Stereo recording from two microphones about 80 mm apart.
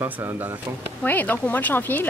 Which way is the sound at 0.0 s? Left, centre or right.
Right.